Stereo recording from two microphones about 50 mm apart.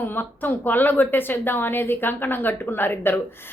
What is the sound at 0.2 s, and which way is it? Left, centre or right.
A woman's voice, left.